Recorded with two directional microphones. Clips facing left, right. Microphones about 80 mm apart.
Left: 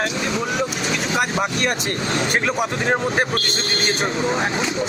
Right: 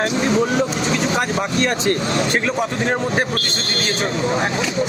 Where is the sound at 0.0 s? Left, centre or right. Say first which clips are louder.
Right 5 dB; right.